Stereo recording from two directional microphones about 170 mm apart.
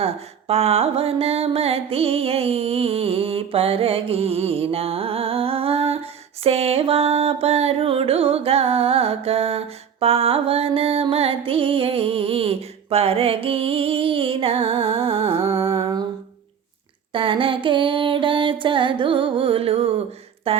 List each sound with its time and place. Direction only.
0.0 s music: 35° right (ahead or behind)
15.5 s music: 15° right (ahead or behind)
17.1 s a sound: 30° right (ahead or behind)